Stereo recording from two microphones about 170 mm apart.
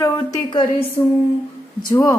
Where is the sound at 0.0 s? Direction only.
20° left (ahead or behind).